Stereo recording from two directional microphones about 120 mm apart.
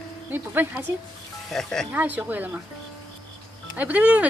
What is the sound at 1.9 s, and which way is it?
Speech, 15° right (ahead or behind).